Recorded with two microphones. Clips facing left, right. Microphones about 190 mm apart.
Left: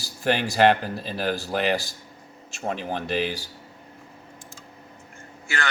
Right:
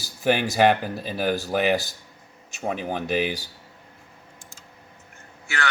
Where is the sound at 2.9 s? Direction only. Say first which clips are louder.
Right 2 dB; 15° right (ahead or behind).